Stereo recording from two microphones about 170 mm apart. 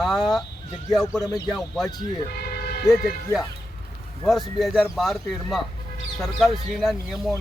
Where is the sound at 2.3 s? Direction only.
70° left (ahead or behind).